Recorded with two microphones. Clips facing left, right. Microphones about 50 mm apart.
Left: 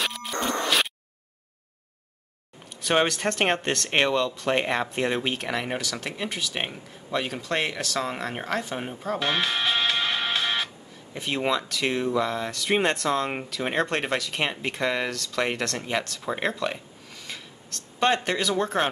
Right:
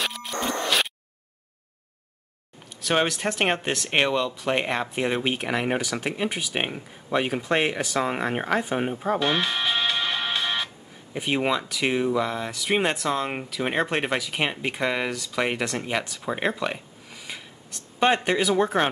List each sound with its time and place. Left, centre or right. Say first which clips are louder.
0.0 s a sound: even; centre
2.8 s speech: left 1 dB; centre; by 9.2 s right
9.2 s music: right 1 dB; centre
11.1 s speech: right 2 dB; centre